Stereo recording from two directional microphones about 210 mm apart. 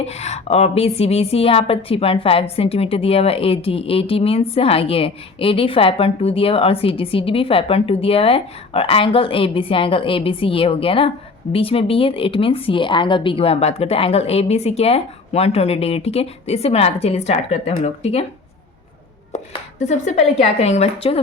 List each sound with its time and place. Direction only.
0.0 s a woman's voice: 30° left (ahead or behind)
19.3 s a woman's voice: 35° left (ahead or behind)